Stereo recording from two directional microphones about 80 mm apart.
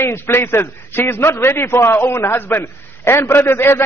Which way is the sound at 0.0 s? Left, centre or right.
Left.